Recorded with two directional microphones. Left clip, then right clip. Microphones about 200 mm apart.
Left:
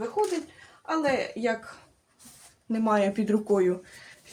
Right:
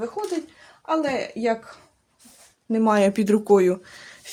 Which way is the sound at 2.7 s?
40° right (ahead or behind).